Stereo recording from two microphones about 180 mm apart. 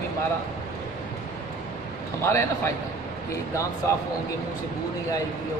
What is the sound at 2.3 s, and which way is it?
Speech, 15° left (ahead or behind).